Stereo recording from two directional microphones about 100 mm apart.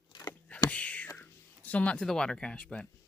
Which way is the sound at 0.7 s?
15° left (ahead or behind).